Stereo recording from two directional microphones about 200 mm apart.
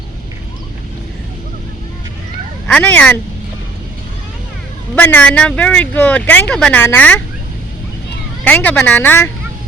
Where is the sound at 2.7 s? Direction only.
5° left (ahead or behind).